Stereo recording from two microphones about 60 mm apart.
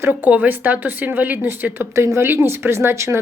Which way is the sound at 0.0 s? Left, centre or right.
Right.